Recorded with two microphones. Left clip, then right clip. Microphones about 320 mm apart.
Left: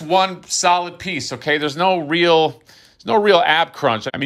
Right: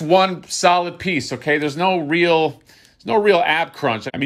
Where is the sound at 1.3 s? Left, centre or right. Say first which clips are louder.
Left 3 dB; centre.